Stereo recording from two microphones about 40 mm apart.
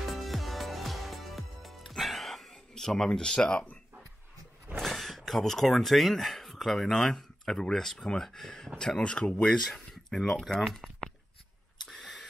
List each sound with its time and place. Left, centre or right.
0.1 s music: centre
2.7 s a sound: centre
3.1 s speech: left
4.7 s speech: centre; by 9.5 s left
9.5 s speech: centre